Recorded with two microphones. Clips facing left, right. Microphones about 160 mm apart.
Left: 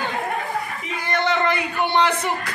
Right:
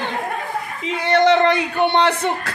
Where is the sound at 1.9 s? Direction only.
65° right (ahead or behind).